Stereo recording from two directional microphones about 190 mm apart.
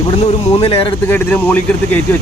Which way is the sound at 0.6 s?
30° left (ahead or behind).